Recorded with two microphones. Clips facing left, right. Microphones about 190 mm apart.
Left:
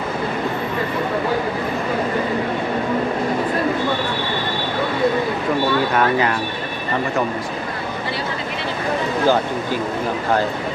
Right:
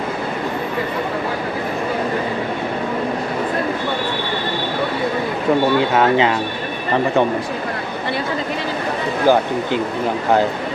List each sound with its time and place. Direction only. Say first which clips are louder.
5.9 s speech: right 3 dB; 25° right (ahead or behind)
9.2 s speech: right 4 dB; 15° right (ahead or behind)